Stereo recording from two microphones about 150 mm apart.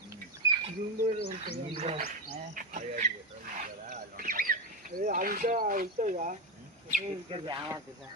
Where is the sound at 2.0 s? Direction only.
65° right (ahead or behind).